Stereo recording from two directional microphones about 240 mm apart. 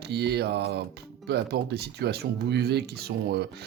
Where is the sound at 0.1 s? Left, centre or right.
Right.